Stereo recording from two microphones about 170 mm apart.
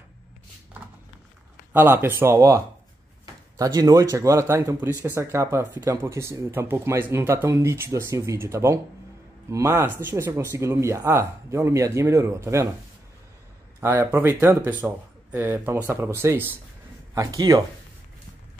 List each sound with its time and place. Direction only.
1.7 s speech: 10° right (ahead or behind)
13.7 s speech: 15° right (ahead or behind)